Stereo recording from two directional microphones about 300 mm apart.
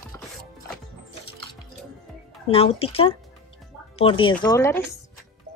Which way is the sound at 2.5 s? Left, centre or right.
Centre.